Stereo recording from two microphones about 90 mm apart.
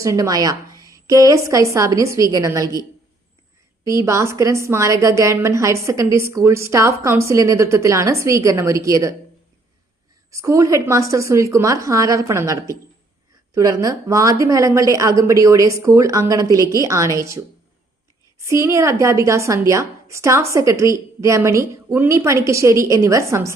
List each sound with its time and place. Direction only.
0.0 s a woman's voice: 40° right (ahead or behind)
3.8 s a woman's voice: 35° right (ahead or behind)
10.3 s a woman's voice: 35° right (ahead or behind)